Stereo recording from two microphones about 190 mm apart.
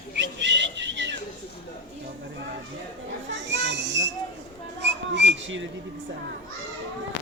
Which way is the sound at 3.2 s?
70° right (ahead or behind).